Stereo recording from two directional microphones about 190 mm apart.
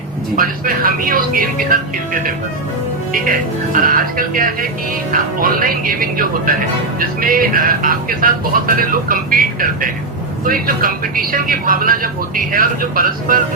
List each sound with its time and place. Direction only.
0.3 s speech: 45° right (ahead or behind)